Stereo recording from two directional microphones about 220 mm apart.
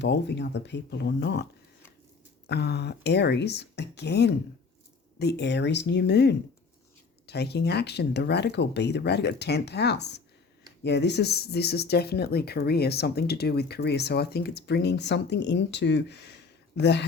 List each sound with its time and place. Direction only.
0.0 s speech: 50° left (ahead or behind)
2.5 s speech: 50° left (ahead or behind)